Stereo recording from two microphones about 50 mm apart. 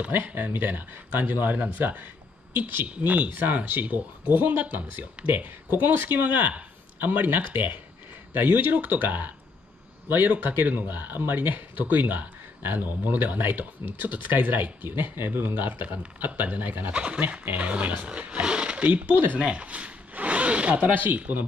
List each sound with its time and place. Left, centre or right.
0.1 s a man's voice: right
16.9 s speech: right
18.9 s speech: right
19.4 s speech: right